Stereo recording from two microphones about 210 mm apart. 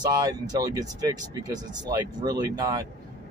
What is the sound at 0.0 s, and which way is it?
Speech, 20° right (ahead or behind).